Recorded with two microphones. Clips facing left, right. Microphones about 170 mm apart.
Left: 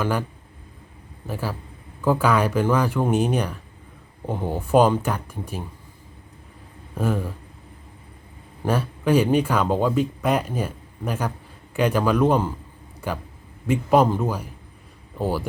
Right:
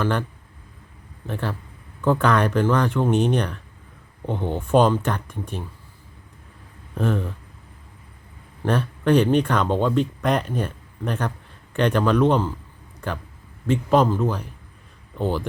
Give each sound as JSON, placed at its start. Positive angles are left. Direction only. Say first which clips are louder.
{"t": 0.0, "sound": "speech", "louder": "right 1 dB", "side_deg": 10}
{"t": 1.3, "sound": "speech", "louder": "right 1 dB", "side_deg": 5}
{"t": 6.9, "sound": "speech", "louder": "right 1 dB", "side_deg": 10}
{"t": 8.6, "sound": "speech", "louder": "right 1 dB", "side_deg": 5}